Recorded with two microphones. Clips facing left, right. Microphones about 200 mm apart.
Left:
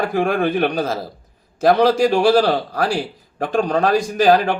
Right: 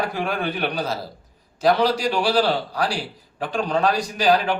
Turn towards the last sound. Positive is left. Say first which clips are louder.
# left 5 dB
turn(degrees=50)  # may be behind; listen again after turning